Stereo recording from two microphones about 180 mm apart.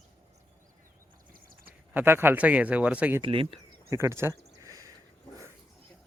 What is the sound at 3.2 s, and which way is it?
Speech, 30° right (ahead or behind).